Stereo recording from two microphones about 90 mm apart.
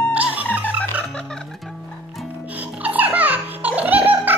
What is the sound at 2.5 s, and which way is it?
Music, 15° right (ahead or behind).